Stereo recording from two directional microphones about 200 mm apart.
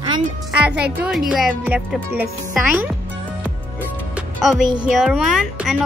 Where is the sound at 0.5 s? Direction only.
5° right (ahead or behind).